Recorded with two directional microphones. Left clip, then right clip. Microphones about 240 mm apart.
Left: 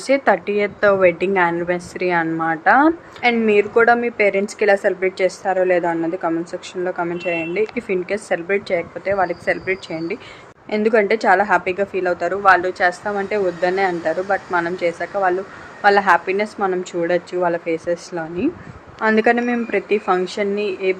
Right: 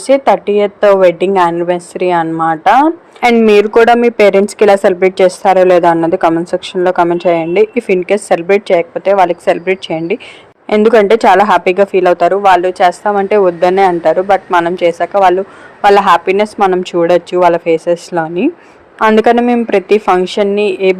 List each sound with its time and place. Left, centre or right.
0.1 s a woman's voice: centre
3.2 s speech: right